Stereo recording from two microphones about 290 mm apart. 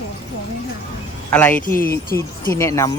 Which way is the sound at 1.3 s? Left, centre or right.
Centre.